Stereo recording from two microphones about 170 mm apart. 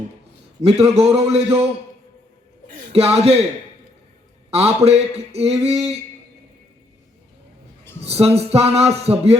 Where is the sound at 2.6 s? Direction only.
50° right (ahead or behind).